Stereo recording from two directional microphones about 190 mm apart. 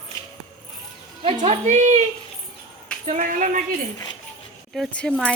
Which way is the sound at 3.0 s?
40° right (ahead or behind).